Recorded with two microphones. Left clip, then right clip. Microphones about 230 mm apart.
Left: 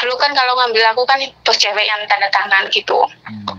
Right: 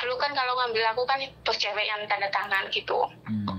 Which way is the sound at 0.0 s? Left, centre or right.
Centre.